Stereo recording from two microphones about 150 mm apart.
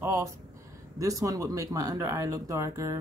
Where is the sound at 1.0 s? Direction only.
25° right (ahead or behind).